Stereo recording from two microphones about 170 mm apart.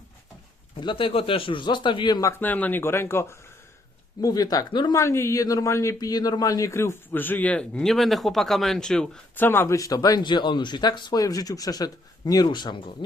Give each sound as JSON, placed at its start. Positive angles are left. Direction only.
{"t": 0.8, "sound": "speech", "side_deg": 30}